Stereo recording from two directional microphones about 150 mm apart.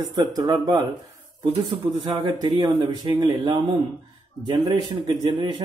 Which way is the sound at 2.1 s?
35° right (ahead or behind).